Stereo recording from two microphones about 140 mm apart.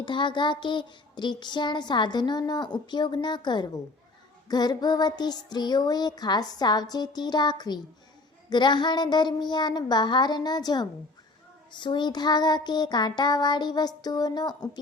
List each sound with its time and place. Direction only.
0.0 s child singing: 35° left (ahead or behind)
4.4 s music: 30° left (ahead or behind)
8.4 s child singing: 30° left (ahead or behind)